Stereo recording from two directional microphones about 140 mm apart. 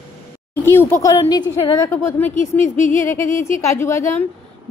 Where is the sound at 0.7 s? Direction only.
15° left (ahead or behind).